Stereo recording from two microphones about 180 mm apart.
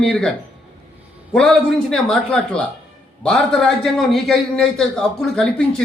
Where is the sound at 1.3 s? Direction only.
5° left (ahead or behind).